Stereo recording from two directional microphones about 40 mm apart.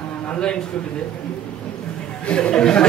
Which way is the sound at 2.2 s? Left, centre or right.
Left.